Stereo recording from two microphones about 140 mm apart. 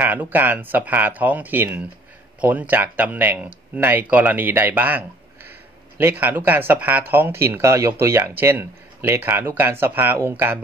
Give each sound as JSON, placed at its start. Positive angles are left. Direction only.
{"t": 0.0, "sound": "speech", "side_deg": -15}